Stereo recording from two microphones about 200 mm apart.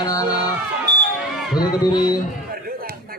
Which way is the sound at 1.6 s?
20° left (ahead or behind).